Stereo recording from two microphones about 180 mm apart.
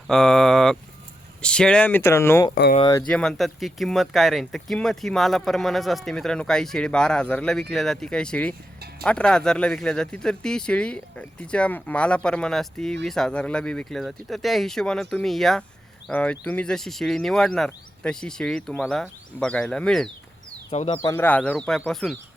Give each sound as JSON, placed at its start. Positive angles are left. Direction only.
{"t": 0.1, "sound": "speech", "side_deg": 0}
{"t": 3.1, "sound": "speech", "side_deg": 5}
{"t": 20.7, "sound": "speech", "side_deg": 35}
{"t": 21.0, "sound": "speech", "side_deg": 15}